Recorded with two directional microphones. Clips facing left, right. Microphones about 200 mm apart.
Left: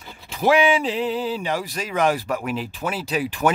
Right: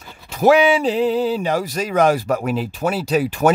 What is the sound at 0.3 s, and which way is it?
Speech, 45° right (ahead or behind).